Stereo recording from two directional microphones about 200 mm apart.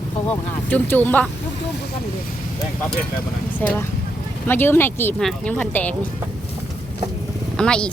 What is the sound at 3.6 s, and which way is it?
Speech, 10° left (ahead or behind).